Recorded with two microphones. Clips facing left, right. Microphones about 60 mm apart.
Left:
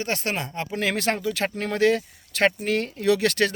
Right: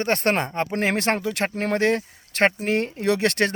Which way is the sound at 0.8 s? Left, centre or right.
Right.